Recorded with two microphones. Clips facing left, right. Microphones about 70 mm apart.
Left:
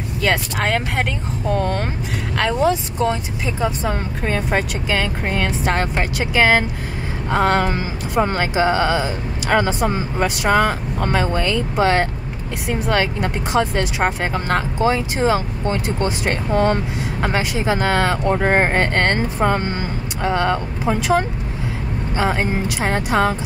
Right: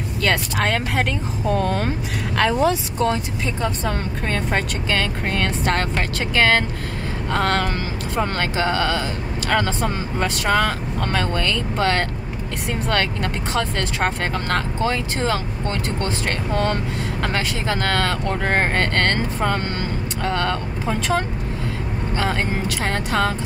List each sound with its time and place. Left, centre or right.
0.2 s speech: centre